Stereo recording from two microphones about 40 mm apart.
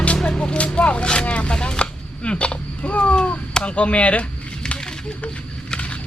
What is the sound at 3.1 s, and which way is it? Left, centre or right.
Cat, left.